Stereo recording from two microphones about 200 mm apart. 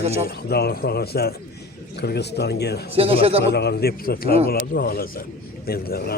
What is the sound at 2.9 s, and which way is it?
Speech, 30° right (ahead or behind).